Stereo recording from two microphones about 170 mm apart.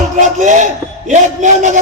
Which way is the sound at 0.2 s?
45° right (ahead or behind).